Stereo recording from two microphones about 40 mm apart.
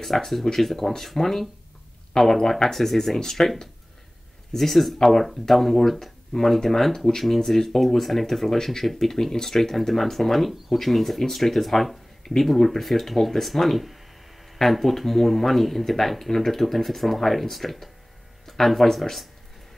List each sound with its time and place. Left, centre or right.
0.0 s speech: centre